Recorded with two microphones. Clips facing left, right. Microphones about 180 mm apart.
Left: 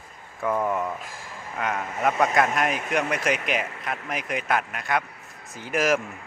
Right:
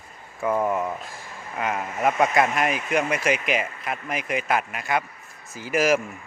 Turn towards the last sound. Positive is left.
turn(degrees=0)  # may be behind; listen again after turning